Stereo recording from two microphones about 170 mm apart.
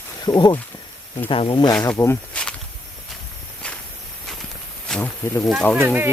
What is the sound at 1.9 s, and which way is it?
Speech, 10° left (ahead or behind).